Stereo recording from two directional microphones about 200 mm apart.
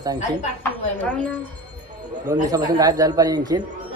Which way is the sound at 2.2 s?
20° right (ahead or behind).